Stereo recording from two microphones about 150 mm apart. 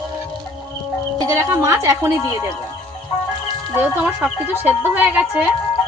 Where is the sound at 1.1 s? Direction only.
20° right (ahead or behind).